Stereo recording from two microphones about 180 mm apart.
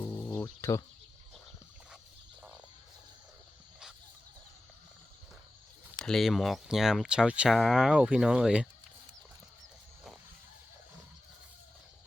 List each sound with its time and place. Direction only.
0.0 s music: 10° left (ahead or behind)
6.0 s speech: centre (ahead or behind)